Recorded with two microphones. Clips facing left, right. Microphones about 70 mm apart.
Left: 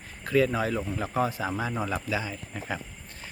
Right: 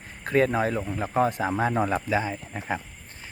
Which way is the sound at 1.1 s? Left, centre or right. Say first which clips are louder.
Right 5 dB; right.